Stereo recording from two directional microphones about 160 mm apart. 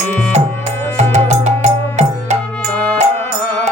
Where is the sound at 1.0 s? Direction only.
45° right (ahead or behind).